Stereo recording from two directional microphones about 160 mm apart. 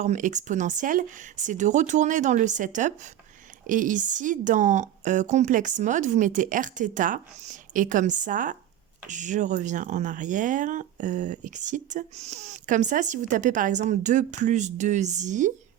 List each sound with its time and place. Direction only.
0.0 s speech: 50° right (ahead or behind)